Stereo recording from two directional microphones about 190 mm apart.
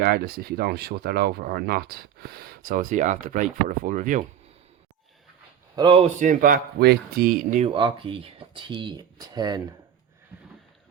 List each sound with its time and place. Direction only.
0.0 s speech: 55° right (ahead or behind)
5.7 s speech: 25° right (ahead or behind)
6.1 s speech: 45° right (ahead or behind)
7.6 s speech: 25° right (ahead or behind)